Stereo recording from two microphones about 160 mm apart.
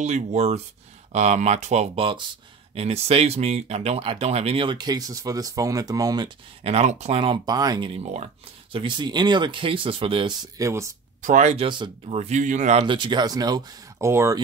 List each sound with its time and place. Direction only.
0.0 s speech: 40° right (ahead or behind); by 6.3 s 25° right (ahead or behind)
6.6 s speech: 40° right (ahead or behind)
8.0 s speech: 40° right (ahead or behind)
8.7 s speech: 30° right (ahead or behind)
11.2 s speech: 45° right (ahead or behind)
12.8 s speech: 30° right (ahead or behind)